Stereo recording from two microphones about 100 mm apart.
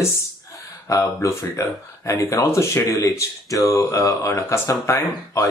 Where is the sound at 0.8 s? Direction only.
30° left (ahead or behind).